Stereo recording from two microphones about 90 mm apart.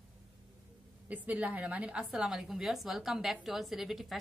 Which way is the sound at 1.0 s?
15° right (ahead or behind).